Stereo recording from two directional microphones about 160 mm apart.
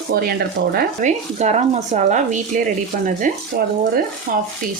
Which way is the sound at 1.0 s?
45° right (ahead or behind).